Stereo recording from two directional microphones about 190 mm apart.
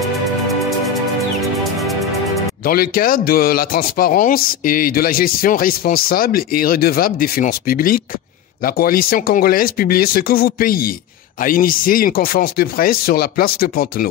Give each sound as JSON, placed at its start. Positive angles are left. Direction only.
{"t": 0.7, "sound": "music", "side_deg": 0}
{"t": 2.6, "sound": "a man's voice", "side_deg": 50}